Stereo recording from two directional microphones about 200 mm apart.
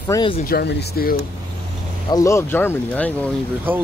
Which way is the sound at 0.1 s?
25° left (ahead or behind).